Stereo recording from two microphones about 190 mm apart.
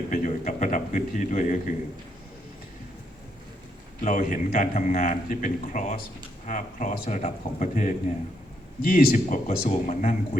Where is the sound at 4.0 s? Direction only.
45° left (ahead or behind).